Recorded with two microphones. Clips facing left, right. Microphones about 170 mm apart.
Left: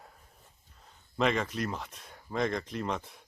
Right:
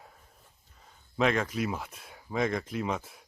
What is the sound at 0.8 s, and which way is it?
Speech, centre (ahead or behind).